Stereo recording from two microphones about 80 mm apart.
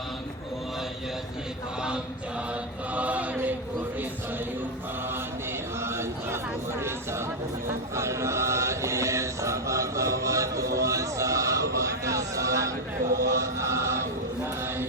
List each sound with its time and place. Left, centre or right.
2.9 s chant: centre
5.8 s a sound: right
7.9 s chant: right
13.1 s music: right